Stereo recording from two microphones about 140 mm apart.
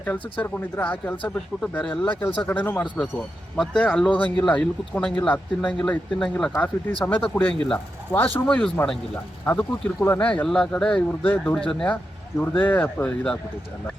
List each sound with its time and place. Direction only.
0.0 s speech: 10° left (ahead or behind)
3.6 s speech: 5° left (ahead or behind)